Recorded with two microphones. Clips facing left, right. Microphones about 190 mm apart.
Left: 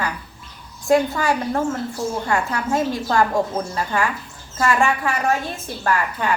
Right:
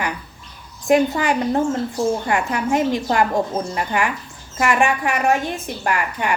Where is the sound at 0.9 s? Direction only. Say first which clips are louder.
Right 1 dB; 20° right (ahead or behind).